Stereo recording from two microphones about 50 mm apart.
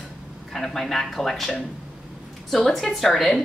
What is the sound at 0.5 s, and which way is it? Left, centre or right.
A woman's voice, centre.